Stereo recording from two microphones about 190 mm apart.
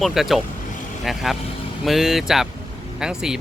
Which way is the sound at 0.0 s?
Centre (ahead or behind).